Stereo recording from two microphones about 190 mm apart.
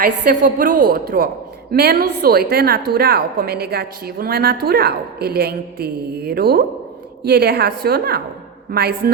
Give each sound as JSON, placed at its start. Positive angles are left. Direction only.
{"t": 0.0, "sound": "a woman's voice", "side_deg": -45}